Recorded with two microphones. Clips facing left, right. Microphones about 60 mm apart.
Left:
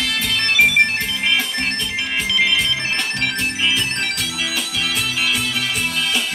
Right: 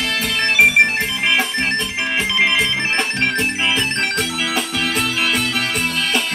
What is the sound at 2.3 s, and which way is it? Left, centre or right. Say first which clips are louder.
Music: right 1 dB; right.